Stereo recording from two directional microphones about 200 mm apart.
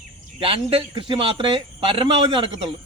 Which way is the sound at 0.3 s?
25° right (ahead or behind).